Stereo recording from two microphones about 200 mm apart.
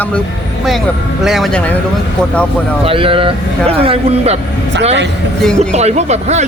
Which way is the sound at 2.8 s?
25° right (ahead or behind).